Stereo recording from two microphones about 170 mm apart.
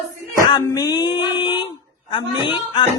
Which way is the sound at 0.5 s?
25° left (ahead or behind).